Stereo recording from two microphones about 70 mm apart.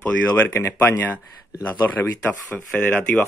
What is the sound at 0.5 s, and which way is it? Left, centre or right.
Speech, left.